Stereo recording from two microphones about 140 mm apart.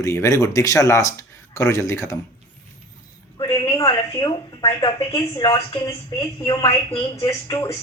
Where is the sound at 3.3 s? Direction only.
30° left (ahead or behind).